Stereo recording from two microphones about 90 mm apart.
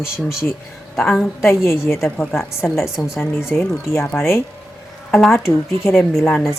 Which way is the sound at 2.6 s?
10° left (ahead or behind).